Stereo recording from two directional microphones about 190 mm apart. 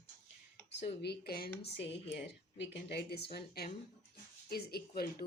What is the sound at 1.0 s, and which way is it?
Speech, 55° left (ahead or behind).